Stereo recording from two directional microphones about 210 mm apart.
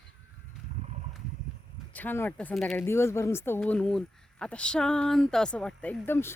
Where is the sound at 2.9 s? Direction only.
10° left (ahead or behind).